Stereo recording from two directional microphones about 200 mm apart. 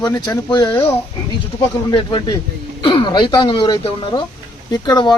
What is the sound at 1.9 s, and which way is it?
Speech, 25° left (ahead or behind).